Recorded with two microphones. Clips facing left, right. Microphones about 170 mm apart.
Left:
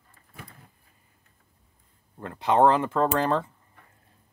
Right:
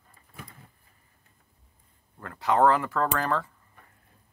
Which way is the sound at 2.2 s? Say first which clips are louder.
Left 2 dB; 20° left (ahead or behind).